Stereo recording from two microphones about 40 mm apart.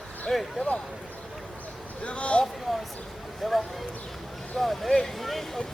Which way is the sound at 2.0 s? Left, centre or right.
Left.